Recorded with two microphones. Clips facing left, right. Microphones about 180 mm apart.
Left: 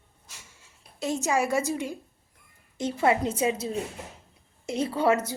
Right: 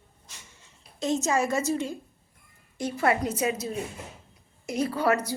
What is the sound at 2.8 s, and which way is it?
A woman's voice, 20° left (ahead or behind).